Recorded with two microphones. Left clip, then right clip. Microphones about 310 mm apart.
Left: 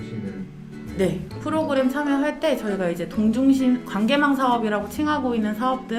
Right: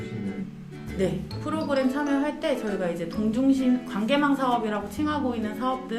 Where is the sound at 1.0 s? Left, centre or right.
Left.